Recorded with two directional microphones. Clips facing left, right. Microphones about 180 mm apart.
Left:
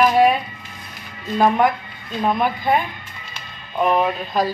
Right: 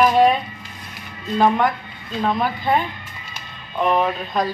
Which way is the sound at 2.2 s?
10° left (ahead or behind).